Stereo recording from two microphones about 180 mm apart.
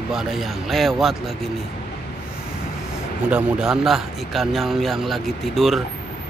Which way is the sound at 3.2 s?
5° right (ahead or behind).